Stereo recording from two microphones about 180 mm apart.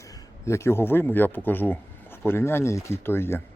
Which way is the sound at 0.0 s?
15° left (ahead or behind).